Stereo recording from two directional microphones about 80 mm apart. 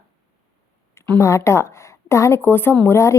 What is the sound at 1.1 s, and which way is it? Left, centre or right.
A woman's voice, left.